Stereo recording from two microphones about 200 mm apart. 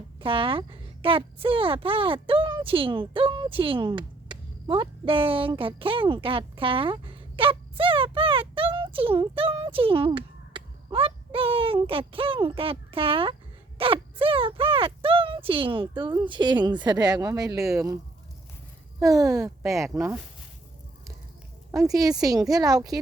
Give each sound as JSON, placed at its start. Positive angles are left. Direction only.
{"t": 0.2, "sound": "a woman's voice", "side_deg": -25}
{"t": 18.9, "sound": "a child's voice", "side_deg": -15}
{"t": 21.7, "sound": "a child's voice", "side_deg": -15}